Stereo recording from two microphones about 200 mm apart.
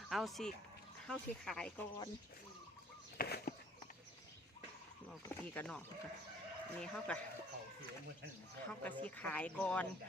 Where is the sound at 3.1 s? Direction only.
50° left (ahead or behind).